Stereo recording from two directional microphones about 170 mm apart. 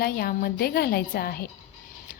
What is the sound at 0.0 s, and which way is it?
A woman's voice, 60° left (ahead or behind).